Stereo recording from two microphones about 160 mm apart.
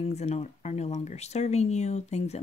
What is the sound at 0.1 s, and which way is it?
Speech, 45° left (ahead or behind).